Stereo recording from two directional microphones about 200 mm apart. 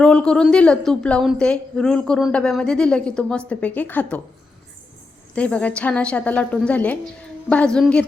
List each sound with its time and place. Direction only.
0.0 s a woman's voice: 5° left (ahead or behind)
5.3 s a woman's voice: 5° left (ahead or behind)